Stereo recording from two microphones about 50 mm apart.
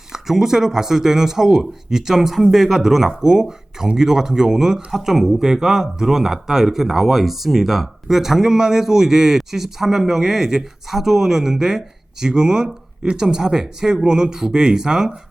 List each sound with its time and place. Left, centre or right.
0.1 s speech: centre